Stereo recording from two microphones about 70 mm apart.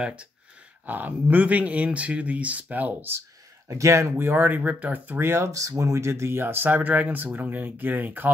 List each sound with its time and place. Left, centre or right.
0.0 s speech: centre
3.6 s speech: right
4.2 s speech: right